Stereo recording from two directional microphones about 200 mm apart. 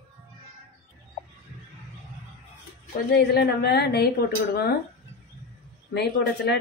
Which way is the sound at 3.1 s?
55° left (ahead or behind).